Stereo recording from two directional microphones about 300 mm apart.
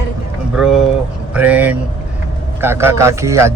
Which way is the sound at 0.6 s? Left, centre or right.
Centre.